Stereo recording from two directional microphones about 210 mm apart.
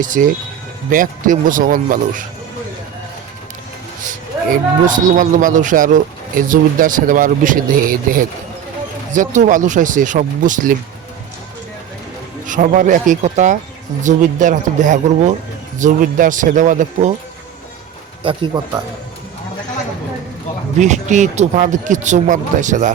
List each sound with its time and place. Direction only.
0.0 s speech: 40° right (ahead or behind)
4.9 s speech: 40° right (ahead or behind)
12.5 s speech: 40° right (ahead or behind)
18.2 s speech: 25° right (ahead or behind)
20.7 s speech: 35° right (ahead or behind)